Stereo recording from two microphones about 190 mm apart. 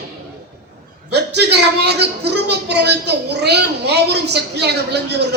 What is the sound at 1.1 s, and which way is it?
Speech, 60° right (ahead or behind).